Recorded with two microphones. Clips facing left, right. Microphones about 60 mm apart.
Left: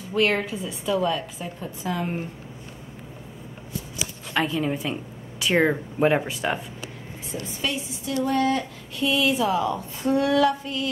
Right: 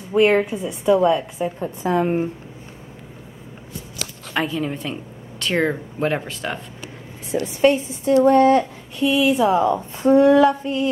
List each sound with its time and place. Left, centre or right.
0.1 s a woman's voice: centre
1.4 s a woman's voice: right
4.3 s a woman's voice: centre
7.3 s a woman's voice: right
9.0 s a woman's voice: centre
9.6 s a woman's voice: right
10.0 s female singing: right